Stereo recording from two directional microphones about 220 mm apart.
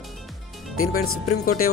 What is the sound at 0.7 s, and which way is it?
Speech, 75° left (ahead or behind).